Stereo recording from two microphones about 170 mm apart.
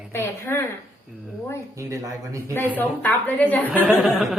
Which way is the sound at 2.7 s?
10° left (ahead or behind).